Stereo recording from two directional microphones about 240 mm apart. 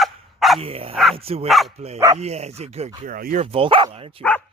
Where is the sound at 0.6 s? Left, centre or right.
Right.